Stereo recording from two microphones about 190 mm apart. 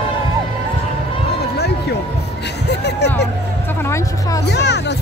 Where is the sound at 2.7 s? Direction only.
65° left (ahead or behind).